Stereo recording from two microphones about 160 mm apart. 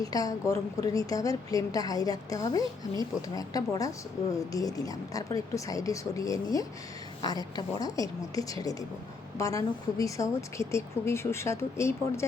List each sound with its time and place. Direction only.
0.0 s a woman's voice: 20° left (ahead or behind)